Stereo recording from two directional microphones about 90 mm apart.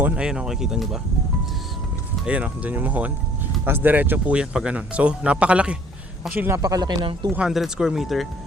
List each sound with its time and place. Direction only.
0.0 s speech: 10° right (ahead or behind)
2.2 s speech: 15° right (ahead or behind)
6.6 s speech: 45° right (ahead or behind)
7.0 s speech: 75° right (ahead or behind)
7.3 s speech: 10° right (ahead or behind)